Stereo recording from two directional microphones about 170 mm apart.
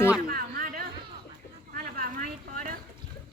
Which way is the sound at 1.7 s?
55° right (ahead or behind).